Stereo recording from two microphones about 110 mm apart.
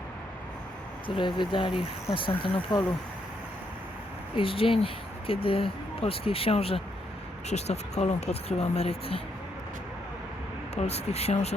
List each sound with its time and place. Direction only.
1.0 s speech: 50° left (ahead or behind)
4.4 s speech: 55° left (ahead or behind)
7.5 s speech: 90° left; by 9.2 s 65° left (ahead or behind)
10.8 s speech: 75° left (ahead or behind)